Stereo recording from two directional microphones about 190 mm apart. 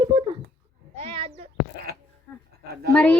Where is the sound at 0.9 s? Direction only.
30° right (ahead or behind).